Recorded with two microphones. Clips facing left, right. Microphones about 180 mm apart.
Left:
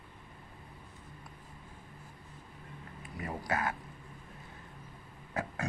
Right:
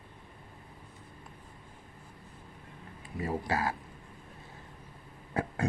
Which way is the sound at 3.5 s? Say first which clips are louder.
Even; 30° right (ahead or behind).